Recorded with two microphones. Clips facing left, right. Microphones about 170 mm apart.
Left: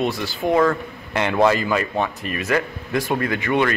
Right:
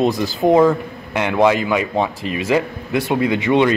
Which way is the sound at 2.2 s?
90° right.